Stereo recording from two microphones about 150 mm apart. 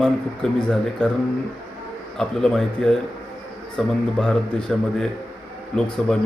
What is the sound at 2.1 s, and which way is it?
A man's voice, 5° left (ahead or behind).